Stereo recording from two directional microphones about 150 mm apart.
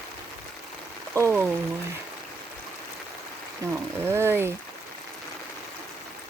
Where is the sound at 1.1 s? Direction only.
15° right (ahead or behind).